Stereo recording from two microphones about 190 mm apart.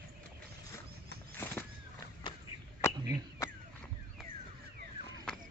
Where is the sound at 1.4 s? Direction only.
10° left (ahead or behind).